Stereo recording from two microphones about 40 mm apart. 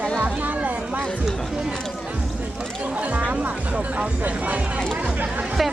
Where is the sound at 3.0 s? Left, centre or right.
Right.